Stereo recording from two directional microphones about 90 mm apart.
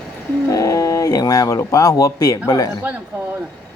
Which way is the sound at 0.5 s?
40° left (ahead or behind).